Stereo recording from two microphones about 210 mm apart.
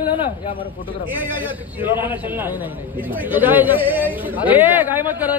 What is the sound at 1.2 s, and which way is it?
Speech, 10° right (ahead or behind).